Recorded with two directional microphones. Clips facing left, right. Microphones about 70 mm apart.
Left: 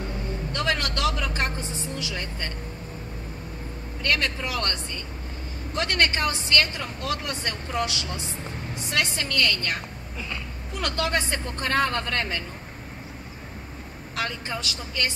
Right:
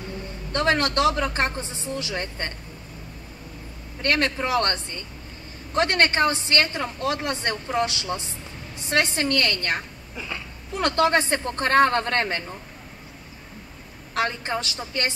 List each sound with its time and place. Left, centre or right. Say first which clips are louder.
0.5 s a woman's voice: right 6 dB; right
4.0 s a woman's voice: right 3 dB; right
5.8 s a woman's voice: right 4 dB; right
8.9 s a woman's voice: right 5 dB; right
10.8 s a woman's voice: right 6 dB; right
14.1 s a woman's voice: right 5 dB; right